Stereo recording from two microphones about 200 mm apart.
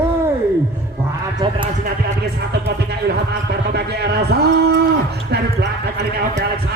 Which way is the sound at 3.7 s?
55° right (ahead or behind).